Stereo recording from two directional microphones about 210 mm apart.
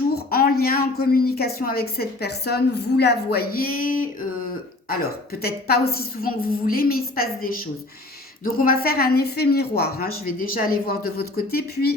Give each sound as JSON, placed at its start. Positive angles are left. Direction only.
{"t": 0.1, "sound": "a woman's voice", "side_deg": 45}